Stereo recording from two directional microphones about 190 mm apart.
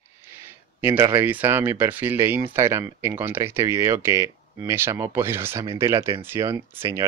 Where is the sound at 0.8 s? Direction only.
10° right (ahead or behind).